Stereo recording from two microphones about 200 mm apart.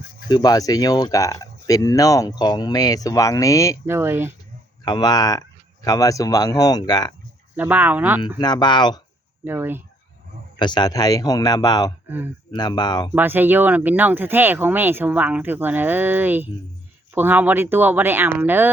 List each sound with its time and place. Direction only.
0.3 s speech: 20° left (ahead or behind)
3.8 s speech: 10° right (ahead or behind)
4.9 s speech: 20° left (ahead or behind)
7.5 s speech: 10° right (ahead or behind)
8.4 s speech: 20° left (ahead or behind)
9.4 s speech: 10° right (ahead or behind)
10.6 s speech: 20° left (ahead or behind)
12.0 s speech: 10° right (ahead or behind)
12.5 s speech: 20° left (ahead or behind)
13.1 s speech: 10° right (ahead or behind)